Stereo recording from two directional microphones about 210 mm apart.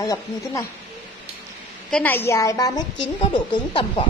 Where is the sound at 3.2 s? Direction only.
20° left (ahead or behind).